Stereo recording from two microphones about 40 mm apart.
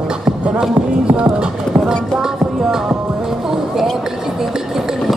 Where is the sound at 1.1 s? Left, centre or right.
Right.